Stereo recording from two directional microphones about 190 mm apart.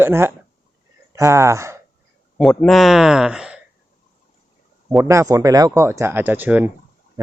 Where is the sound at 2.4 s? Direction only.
Centre (ahead or behind).